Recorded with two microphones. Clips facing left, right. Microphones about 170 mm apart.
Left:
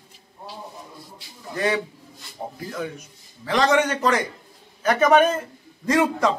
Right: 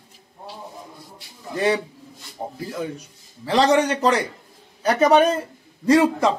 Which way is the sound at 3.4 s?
30° right (ahead or behind).